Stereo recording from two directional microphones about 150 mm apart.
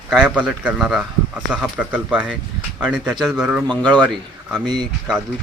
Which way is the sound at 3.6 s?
30° right (ahead or behind).